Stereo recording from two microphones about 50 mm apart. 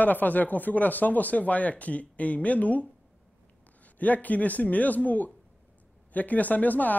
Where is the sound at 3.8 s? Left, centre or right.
Left.